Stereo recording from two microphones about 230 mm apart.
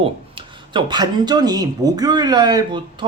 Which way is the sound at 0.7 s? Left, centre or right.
Centre.